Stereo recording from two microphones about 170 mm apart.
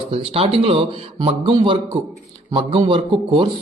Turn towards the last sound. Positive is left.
turn(degrees=-30)  # may be behind; listen again after turning